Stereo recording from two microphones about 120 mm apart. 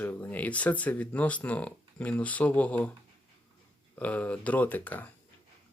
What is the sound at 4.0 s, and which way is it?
Speech, 10° left (ahead or behind).